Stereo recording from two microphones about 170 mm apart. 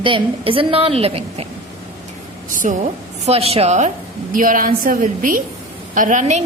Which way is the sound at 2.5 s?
50° right (ahead or behind).